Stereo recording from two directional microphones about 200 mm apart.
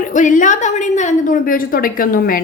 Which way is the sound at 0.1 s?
40° left (ahead or behind).